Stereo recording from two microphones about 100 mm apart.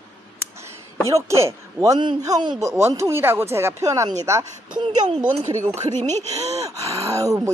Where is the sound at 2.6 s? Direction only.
30° right (ahead or behind).